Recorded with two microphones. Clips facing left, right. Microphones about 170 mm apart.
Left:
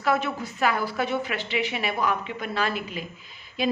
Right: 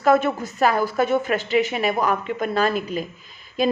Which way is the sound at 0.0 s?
45° right (ahead or behind).